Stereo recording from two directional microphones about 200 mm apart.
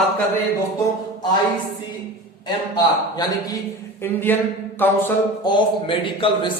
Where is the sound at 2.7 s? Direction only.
20° left (ahead or behind).